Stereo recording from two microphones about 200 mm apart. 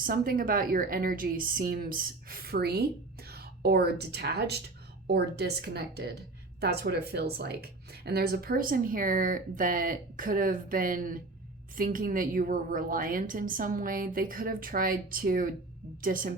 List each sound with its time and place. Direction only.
0.0 s a woman's voice: 45° right (ahead or behind)